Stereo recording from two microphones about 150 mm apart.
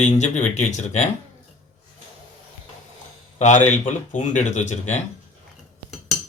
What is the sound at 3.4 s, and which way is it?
Speech, 55° left (ahead or behind).